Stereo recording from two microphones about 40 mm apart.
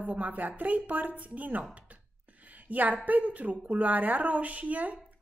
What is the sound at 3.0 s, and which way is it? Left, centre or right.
Speech, right.